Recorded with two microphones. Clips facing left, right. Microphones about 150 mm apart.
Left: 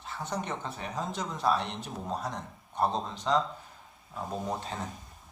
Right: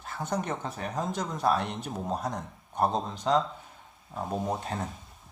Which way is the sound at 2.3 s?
5° right (ahead or behind).